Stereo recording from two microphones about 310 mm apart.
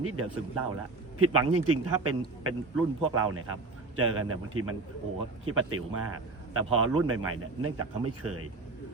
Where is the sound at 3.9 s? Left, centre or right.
Right.